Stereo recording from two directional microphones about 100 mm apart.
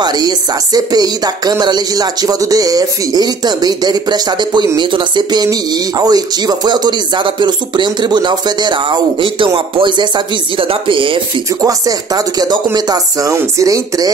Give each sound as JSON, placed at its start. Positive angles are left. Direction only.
{"t": 0.0, "sound": "speech", "side_deg": -45}
{"t": 11.4, "sound": "speech", "side_deg": -35}